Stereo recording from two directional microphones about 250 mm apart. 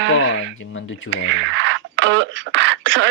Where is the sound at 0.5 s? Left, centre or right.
Left.